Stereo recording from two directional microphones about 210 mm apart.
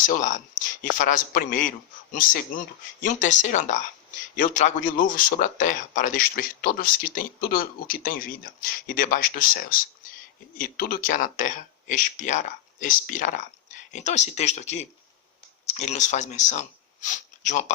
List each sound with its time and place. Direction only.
0.0 s speech: 35° left (ahead or behind)